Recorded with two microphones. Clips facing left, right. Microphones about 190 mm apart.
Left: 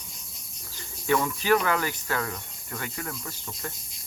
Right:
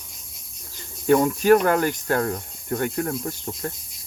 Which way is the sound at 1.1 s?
45° right (ahead or behind).